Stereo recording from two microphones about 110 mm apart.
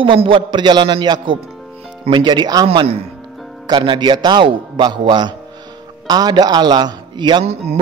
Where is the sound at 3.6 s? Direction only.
45° right (ahead or behind).